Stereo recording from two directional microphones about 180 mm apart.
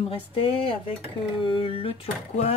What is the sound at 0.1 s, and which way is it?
Speech, 30° left (ahead or behind).